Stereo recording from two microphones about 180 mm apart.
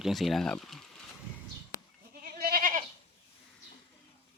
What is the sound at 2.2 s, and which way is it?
Goat, 55° right (ahead or behind).